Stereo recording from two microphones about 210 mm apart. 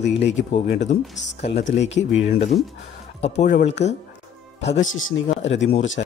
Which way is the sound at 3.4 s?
35° left (ahead or behind).